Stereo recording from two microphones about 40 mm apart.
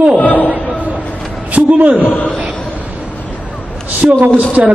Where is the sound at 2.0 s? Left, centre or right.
Left.